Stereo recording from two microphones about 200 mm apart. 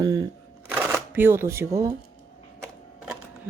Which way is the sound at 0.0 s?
20° right (ahead or behind).